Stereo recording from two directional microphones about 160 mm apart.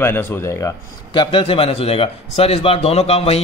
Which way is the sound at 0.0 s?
15° left (ahead or behind).